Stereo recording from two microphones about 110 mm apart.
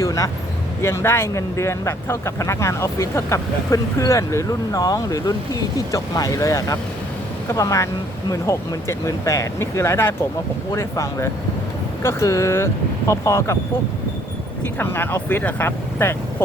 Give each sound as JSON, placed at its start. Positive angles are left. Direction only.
{"t": 0.0, "sound": "speech", "side_deg": 30}
{"t": 14.8, "sound": "speech", "side_deg": 20}